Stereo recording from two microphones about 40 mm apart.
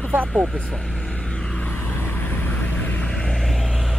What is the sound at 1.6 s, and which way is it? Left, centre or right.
Vehicle, left.